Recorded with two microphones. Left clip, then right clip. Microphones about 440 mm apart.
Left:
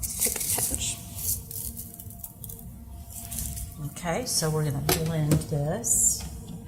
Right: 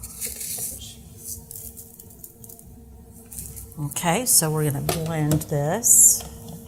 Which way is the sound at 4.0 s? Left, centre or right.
Right.